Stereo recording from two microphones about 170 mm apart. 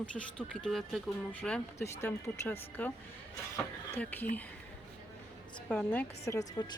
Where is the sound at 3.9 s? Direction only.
10° left (ahead or behind).